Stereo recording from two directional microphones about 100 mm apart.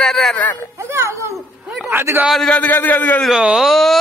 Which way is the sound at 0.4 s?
15° left (ahead or behind).